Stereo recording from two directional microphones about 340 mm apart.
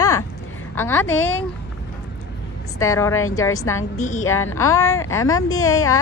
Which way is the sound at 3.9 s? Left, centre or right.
Left.